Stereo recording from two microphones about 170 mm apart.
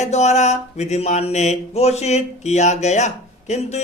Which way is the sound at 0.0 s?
40° left (ahead or behind).